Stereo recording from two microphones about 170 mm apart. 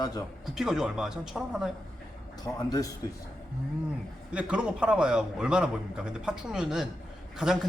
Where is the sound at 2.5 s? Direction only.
20° left (ahead or behind).